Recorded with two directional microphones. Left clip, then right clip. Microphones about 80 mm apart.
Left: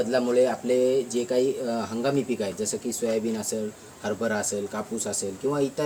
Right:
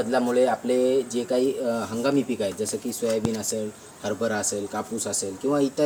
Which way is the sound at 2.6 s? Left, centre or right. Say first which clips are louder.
Right 1 dB; left.